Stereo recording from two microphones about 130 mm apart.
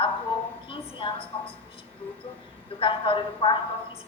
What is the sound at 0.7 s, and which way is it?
Speech, 40° left (ahead or behind).